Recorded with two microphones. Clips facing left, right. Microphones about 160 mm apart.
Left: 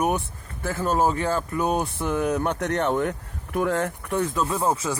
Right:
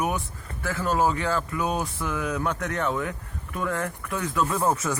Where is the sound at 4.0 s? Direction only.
45° left (ahead or behind).